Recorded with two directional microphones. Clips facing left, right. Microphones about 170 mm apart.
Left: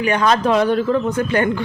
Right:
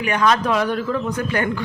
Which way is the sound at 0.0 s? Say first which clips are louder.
Left 2 dB; 30° left (ahead or behind).